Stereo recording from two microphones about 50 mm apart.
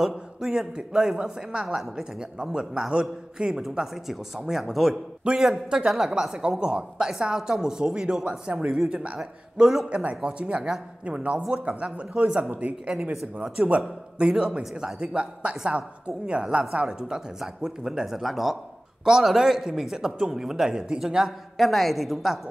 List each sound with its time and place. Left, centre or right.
0.4 s speech: centre
3.7 s speech: centre
9.8 s a man's voice: right
12.4 s speech: right
12.8 s a man's voice: centre
14.6 s speech: centre
15.0 s a man's voice: right; by 22.4 s centre